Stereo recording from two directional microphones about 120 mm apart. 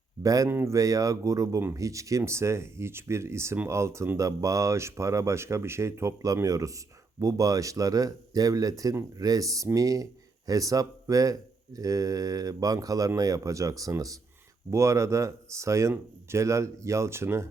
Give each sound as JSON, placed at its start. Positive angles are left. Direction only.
{"t": 0.2, "sound": "speech", "side_deg": -30}